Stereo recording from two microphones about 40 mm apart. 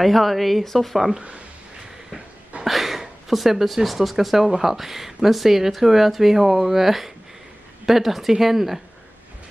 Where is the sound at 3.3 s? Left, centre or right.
Centre.